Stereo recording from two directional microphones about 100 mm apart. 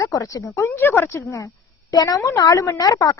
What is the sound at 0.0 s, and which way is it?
Speech, 35° left (ahead or behind).